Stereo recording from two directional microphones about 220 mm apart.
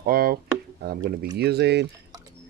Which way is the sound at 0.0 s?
40° right (ahead or behind).